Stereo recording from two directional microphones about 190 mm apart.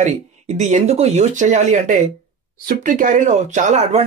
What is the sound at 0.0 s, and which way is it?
Speech, 40° right (ahead or behind).